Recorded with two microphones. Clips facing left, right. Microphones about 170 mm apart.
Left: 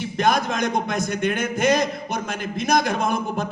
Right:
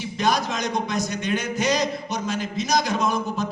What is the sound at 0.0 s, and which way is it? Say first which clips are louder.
A man's voice: left 2 dB; 55° left (ahead or behind).